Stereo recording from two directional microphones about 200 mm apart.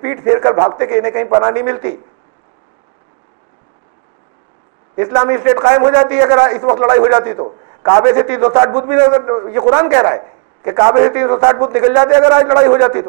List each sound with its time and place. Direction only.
0.0 s a man's voice: 20° right (ahead or behind)
4.9 s a man's voice: 25° right (ahead or behind)